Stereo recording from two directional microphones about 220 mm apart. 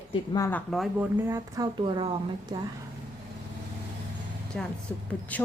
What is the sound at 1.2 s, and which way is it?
A woman's voice, 15° right (ahead or behind).